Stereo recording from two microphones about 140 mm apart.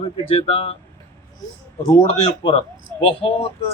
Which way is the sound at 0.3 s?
40° left (ahead or behind).